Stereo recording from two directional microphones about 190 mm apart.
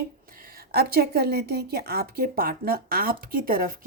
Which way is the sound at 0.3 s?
50° right (ahead or behind).